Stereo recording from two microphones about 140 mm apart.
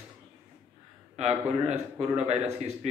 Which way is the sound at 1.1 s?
50° right (ahead or behind).